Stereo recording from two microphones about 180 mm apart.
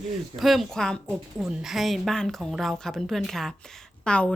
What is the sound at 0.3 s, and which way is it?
A woman's voice, centre (ahead or behind).